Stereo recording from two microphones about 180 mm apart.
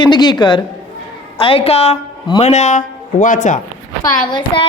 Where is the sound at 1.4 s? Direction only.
30° left (ahead or behind).